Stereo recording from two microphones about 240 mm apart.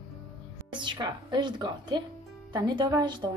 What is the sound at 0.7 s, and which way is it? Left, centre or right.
A woman's voice, centre.